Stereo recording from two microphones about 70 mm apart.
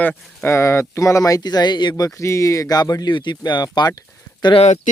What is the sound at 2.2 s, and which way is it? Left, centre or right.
Speech, left.